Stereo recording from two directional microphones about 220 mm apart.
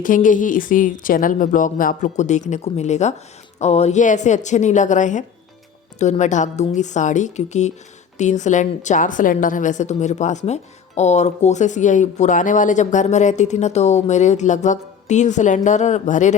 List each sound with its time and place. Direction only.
0.0 s a woman's voice: 35° left (ahead or behind)